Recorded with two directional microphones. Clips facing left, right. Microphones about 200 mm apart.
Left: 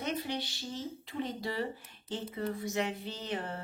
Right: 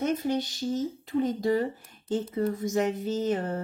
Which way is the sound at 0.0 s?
45° right (ahead or behind).